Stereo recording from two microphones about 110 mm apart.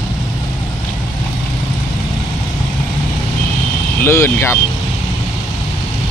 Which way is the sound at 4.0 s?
25° left (ahead or behind).